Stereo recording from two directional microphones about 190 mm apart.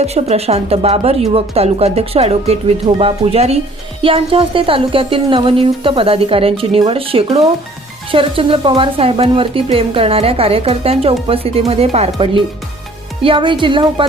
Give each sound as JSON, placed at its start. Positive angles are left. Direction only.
{"t": 0.0, "sound": "speech", "side_deg": -35}
{"t": 13.2, "sound": "speech", "side_deg": -25}